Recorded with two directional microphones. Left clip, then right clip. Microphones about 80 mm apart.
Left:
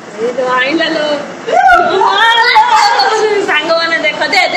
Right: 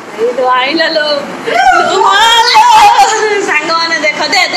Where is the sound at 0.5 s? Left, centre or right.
Left.